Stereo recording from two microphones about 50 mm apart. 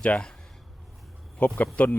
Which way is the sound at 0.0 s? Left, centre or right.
Left.